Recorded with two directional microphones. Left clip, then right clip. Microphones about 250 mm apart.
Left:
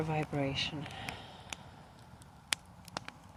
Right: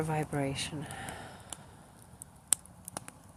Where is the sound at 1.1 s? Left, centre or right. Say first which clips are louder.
Right 3 dB; centre.